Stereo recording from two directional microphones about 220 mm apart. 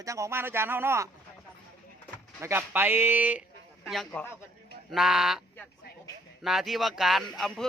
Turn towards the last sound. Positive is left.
turn(degrees=0)  # may be behind; listen again after turning